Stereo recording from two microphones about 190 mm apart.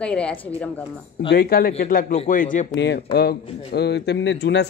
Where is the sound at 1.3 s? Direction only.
55° left (ahead or behind).